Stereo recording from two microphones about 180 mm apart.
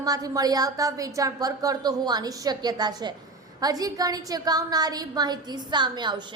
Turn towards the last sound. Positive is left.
turn(degrees=-25)  # may be behind; listen again after turning